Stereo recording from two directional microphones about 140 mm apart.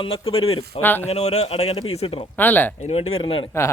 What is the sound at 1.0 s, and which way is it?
A man's voice, 50° left (ahead or behind).